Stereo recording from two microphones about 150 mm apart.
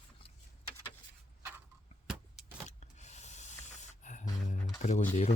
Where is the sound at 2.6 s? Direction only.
50° left (ahead or behind).